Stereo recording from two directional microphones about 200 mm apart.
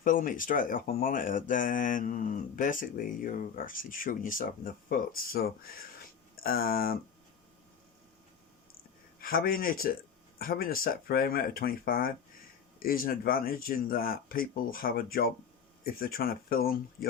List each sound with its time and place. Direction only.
0.0 s speech: 40° left (ahead or behind)
9.2 s speech: 45° left (ahead or behind)